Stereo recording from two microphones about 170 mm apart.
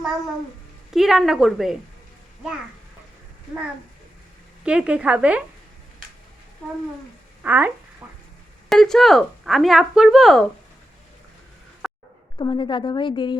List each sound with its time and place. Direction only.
0.9 s speech: centre (ahead or behind)
4.6 s a woman's voice: 5° right (ahead or behind)
7.4 s speech: 10° right (ahead or behind)
8.0 s frying: 5° right (ahead or behind)
8.7 s speech: centre (ahead or behind)
11.8 s a sound: centre (ahead or behind)
12.4 s a woman's voice: 25° left (ahead or behind)